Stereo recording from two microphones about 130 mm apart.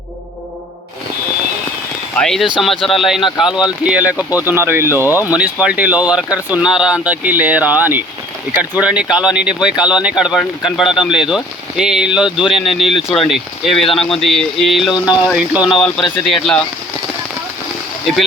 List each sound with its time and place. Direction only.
2.1 s speech: 5° left (ahead or behind)